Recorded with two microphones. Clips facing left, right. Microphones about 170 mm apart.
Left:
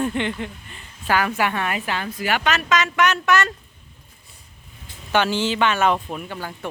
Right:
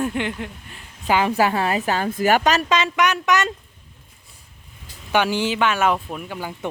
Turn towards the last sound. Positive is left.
turn(degrees=-15)  # may be behind; listen again after turning